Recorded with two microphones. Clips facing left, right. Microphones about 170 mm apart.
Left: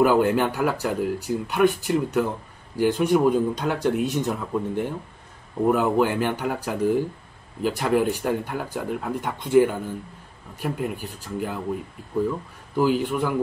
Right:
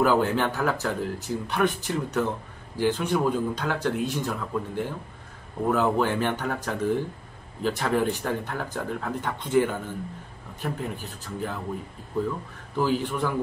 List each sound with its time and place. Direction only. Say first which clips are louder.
0.0 s speech: left 3 dB; 15° left (ahead or behind)
12.7 s speech: left 4 dB; 15° left (ahead or behind)